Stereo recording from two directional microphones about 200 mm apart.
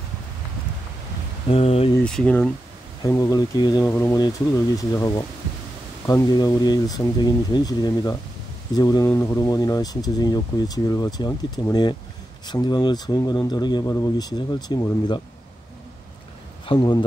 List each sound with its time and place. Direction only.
1.5 s speech: 30° left (ahead or behind)
2.0 s speech: 5° left (ahead or behind)
3.0 s speech: 20° left (ahead or behind)
16.6 s speech: 25° left (ahead or behind)